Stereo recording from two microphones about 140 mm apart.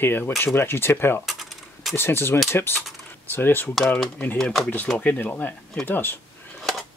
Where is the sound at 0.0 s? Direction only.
15° left (ahead or behind).